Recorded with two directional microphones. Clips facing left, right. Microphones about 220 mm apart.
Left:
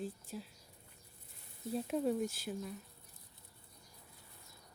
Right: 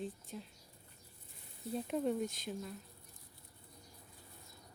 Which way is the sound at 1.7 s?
Centre (ahead or behind).